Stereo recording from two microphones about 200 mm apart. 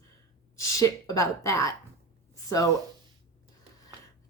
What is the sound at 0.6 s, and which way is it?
A woman's voice, 15° left (ahead or behind).